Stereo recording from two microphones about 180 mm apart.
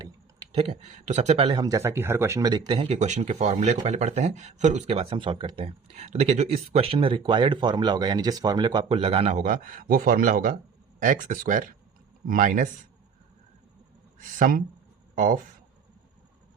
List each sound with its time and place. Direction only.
0.5 s speech: 35° right (ahead or behind)
14.3 s speech: 50° right (ahead or behind)